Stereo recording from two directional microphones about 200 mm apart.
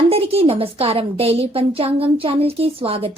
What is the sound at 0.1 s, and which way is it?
A woman's voice, 30° right (ahead or behind).